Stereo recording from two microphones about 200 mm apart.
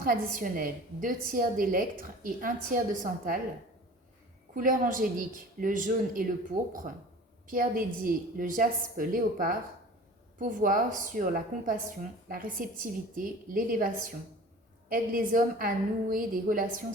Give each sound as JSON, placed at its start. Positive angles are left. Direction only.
{"t": 0.0, "sound": "a woman's voice", "side_deg": -45}
{"t": 4.5, "sound": "a woman's voice", "side_deg": -40}